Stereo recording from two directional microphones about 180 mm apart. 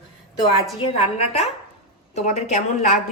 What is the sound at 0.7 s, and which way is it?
A woman's voice, 35° left (ahead or behind).